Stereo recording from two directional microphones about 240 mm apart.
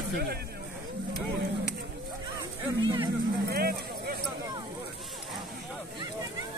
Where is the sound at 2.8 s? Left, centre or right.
Centre.